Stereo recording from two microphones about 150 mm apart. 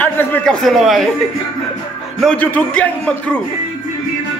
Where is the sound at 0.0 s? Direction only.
15° left (ahead or behind).